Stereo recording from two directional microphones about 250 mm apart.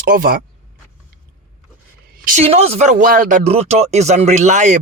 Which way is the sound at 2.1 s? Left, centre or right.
Right.